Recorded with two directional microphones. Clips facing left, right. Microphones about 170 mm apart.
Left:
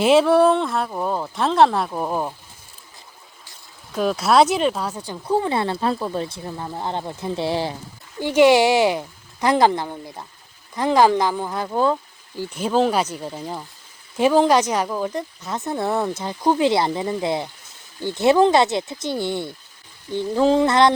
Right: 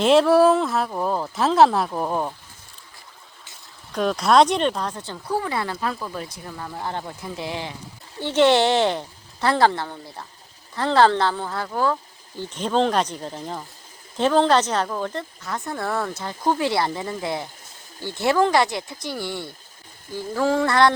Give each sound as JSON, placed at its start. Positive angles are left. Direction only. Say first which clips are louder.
{"t": 0.0, "sound": "speech", "louder": "left 1 dB", "side_deg": 5}
{"t": 3.9, "sound": "speech", "louder": "even", "side_deg": 5}
{"t": 8.2, "sound": "a woman's voice", "louder": "left 3 dB", "side_deg": 10}
{"t": 12.4, "sound": "a woman's voice", "louder": "left 2 dB", "side_deg": 10}